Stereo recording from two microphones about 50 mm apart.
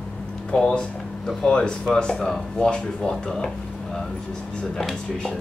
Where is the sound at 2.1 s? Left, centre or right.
Centre.